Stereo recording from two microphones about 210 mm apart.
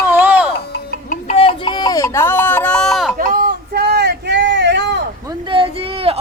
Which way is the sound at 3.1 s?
45° right (ahead or behind).